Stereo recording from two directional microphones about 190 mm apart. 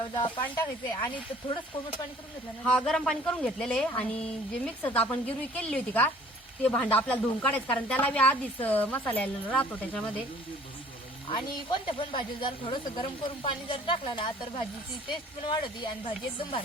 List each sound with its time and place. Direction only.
0.0 s speech: 25° left (ahead or behind)
2.6 s a woman's voice: 5° left (ahead or behind)
11.3 s speech: 25° left (ahead or behind)